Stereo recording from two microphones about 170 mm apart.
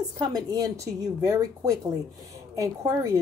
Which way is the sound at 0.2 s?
20° right (ahead or behind).